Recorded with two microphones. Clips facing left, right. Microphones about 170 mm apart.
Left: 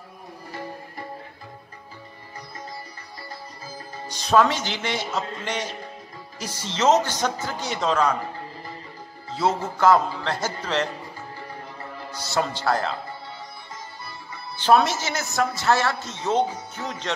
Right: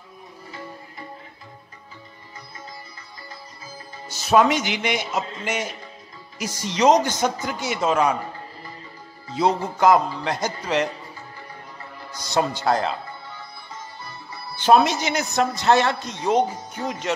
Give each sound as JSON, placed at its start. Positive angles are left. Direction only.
{"t": 4.1, "sound": "a woman's voice", "side_deg": -5}
{"t": 9.4, "sound": "a woman's voice", "side_deg": -15}
{"t": 12.2, "sound": "a man's voice", "side_deg": -20}
{"t": 14.6, "sound": "a woman's voice", "side_deg": -15}